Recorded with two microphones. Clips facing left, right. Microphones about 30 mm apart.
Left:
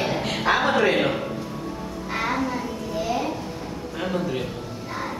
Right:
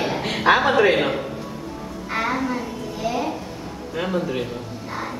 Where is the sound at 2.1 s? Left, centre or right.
Centre.